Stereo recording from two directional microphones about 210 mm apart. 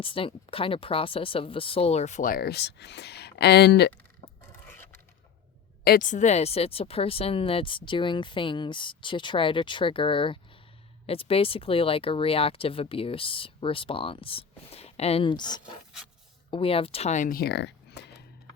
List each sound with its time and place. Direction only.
0.0 s speech: 25° left (ahead or behind); by 3.9 s 50° left (ahead or behind)
4.7 s scrape: 10° left (ahead or behind)
5.8 s speech: 40° left (ahead or behind)